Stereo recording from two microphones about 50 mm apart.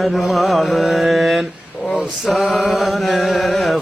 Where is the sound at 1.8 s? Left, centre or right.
Right.